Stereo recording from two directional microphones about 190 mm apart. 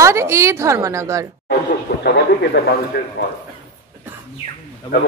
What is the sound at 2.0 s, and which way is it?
A man's voice, 60° left (ahead or behind).